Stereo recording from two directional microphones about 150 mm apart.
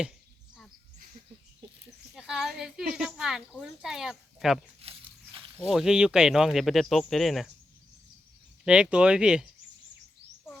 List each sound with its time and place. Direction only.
2.1 s speech: 5° right (ahead or behind)
4.8 s a sound: 40° right (ahead or behind)
5.5 s speech: 5° right (ahead or behind)
8.6 s speech: 5° right (ahead or behind)